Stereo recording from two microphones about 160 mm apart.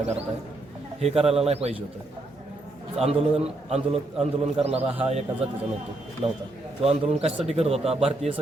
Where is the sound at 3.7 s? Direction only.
40° right (ahead or behind).